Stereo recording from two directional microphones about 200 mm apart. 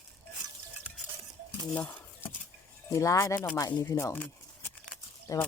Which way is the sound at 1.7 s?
5° left (ahead or behind).